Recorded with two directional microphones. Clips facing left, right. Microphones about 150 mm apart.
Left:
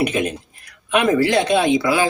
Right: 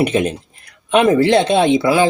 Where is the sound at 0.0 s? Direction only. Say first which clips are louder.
Right 4 dB; 30° right (ahead or behind).